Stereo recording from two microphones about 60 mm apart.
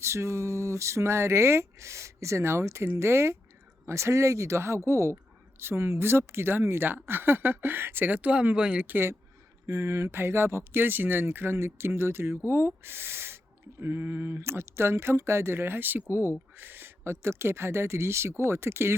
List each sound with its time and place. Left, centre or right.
0.0 s speech: right; by 8.9 s centre
8.9 s speech: right
9.6 s speech: right